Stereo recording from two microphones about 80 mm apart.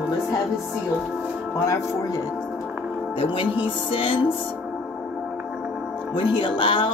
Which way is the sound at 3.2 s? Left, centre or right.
Left.